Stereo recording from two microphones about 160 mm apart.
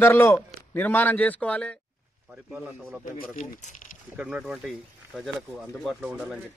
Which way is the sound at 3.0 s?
50° left (ahead or behind).